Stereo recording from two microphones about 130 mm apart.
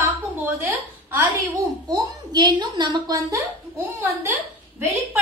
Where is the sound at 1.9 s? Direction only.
30° right (ahead or behind).